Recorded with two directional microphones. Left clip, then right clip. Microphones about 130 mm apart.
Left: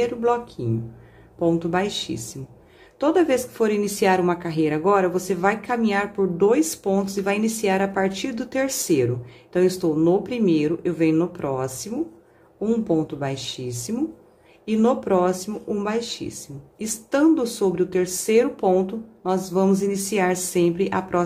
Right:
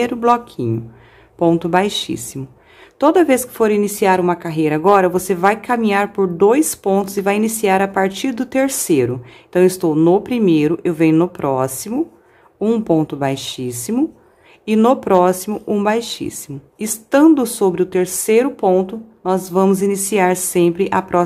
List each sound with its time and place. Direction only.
0.0 s a woman's voice: 40° right (ahead or behind)